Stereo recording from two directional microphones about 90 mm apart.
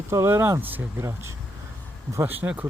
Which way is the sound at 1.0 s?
30° right (ahead or behind).